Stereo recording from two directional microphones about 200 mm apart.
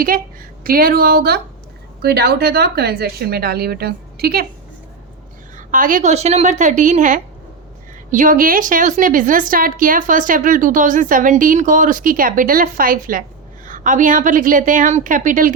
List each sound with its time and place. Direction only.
0.6 s a woman's voice: 45° right (ahead or behind)
5.5 s a woman's voice: 40° right (ahead or behind)